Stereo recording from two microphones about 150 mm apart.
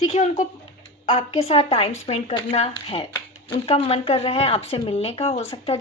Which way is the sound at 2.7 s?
35° left (ahead or behind).